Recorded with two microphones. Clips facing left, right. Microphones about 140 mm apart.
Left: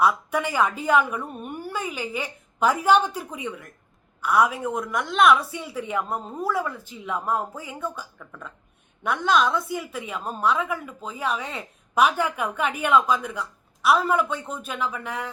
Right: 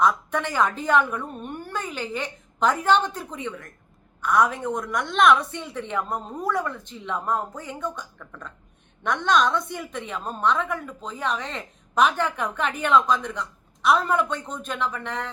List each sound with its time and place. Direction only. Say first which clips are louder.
0.0 s a woman's voice: even; 10° left (ahead or behind)